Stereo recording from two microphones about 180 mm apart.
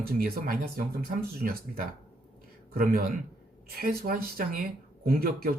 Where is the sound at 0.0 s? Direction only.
55° right (ahead or behind).